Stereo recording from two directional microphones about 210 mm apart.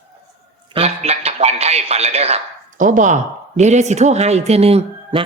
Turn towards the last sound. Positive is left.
turn(degrees=-30)  # may be behind; listen again after turning